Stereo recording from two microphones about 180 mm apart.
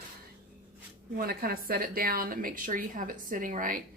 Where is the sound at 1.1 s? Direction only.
55° right (ahead or behind).